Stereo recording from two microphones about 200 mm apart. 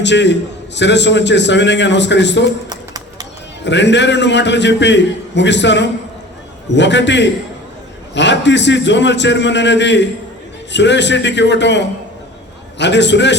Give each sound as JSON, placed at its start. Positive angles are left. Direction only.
{"t": 0.0, "sound": "a man's voice", "side_deg": 60}
{"t": 3.6, "sound": "a man's voice", "side_deg": 60}